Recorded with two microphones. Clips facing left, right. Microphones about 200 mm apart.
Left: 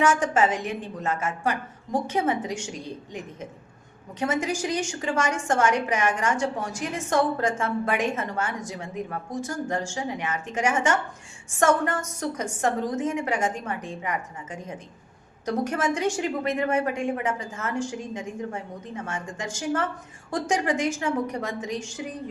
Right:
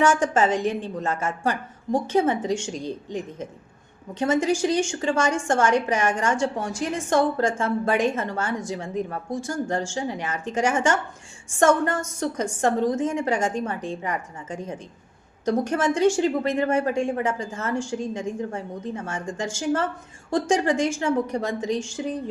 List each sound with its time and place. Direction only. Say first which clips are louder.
0.0 s a woman's voice: right 2 dB; 30° right (ahead or behind)